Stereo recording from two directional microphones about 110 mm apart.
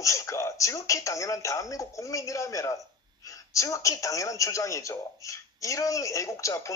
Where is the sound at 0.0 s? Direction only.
30° left (ahead or behind).